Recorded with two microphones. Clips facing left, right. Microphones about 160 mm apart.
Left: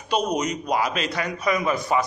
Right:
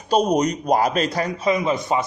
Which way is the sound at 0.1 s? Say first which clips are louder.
Right 5 dB; 35° right (ahead or behind).